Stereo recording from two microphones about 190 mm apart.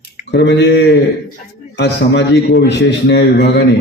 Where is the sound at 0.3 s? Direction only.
65° left (ahead or behind).